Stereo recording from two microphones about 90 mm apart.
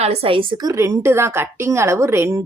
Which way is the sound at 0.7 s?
35° right (ahead or behind).